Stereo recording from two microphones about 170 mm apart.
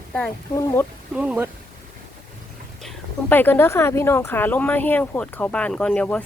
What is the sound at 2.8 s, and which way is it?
Speech, 10° left (ahead or behind).